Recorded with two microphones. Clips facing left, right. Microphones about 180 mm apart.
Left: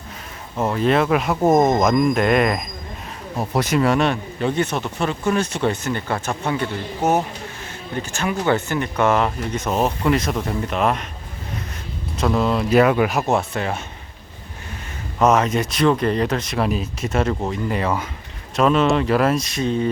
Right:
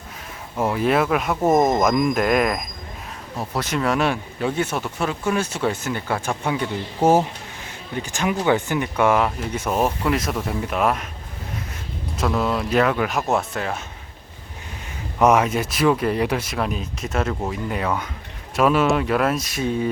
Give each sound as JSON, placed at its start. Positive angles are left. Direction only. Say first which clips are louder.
{"t": 0.6, "sound": "speech", "louder": "left 1 dB", "side_deg": -10}
{"t": 3.3, "sound": "speech", "louder": "left 5 dB", "side_deg": 15}
{"t": 3.8, "sound": "speech", "louder": "left 2 dB", "side_deg": 0}
{"t": 7.0, "sound": "speech", "louder": "right 3 dB", "side_deg": -30}
{"t": 7.9, "sound": "speech", "louder": "even", "side_deg": -15}
{"t": 12.2, "sound": "speech", "louder": "left 3 dB", "side_deg": 0}
{"t": 12.8, "sound": "speech", "louder": "left 4 dB", "side_deg": 10}
{"t": 15.2, "sound": "speech", "louder": "even", "side_deg": -10}